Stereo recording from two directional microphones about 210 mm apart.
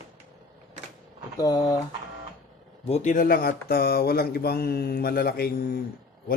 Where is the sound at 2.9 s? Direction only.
35° left (ahead or behind).